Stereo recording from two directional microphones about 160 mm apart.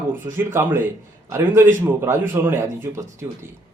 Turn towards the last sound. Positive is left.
turn(degrees=-20)  # may be behind; listen again after turning